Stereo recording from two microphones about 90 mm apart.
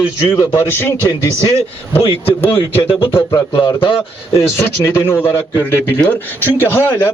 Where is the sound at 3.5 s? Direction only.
60° left (ahead or behind).